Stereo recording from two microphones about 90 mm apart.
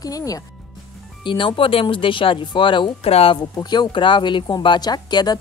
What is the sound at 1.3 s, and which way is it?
Speech, 65° left (ahead or behind).